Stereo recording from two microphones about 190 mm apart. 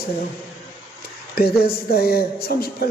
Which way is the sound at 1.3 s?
55° left (ahead or behind).